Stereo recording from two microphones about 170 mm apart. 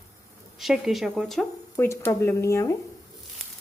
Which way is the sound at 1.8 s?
15° left (ahead or behind).